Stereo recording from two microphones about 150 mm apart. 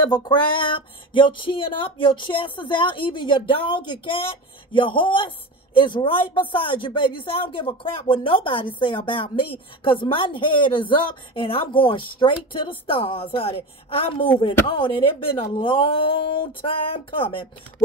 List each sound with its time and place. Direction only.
0.1 s a woman's voice: 30° left (ahead or behind)
4.7 s a woman's voice: 35° left (ahead or behind)